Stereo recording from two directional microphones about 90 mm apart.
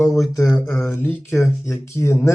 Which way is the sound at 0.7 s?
25° left (ahead or behind).